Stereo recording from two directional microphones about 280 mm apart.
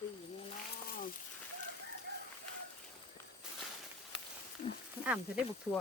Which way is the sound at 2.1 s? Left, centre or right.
Right.